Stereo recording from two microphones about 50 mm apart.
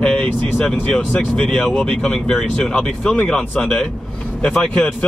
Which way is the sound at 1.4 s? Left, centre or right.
Centre.